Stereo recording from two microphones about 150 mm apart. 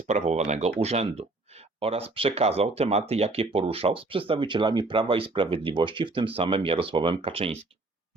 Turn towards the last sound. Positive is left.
turn(degrees=-40)  # may be behind; listen again after turning